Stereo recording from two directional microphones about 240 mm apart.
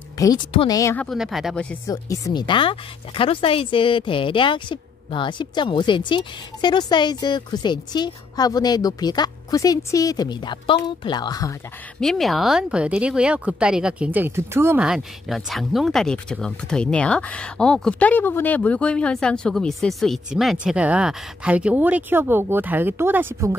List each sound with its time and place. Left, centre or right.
0.2 s speech: centre
1.9 s speech: centre
12.0 s speech: centre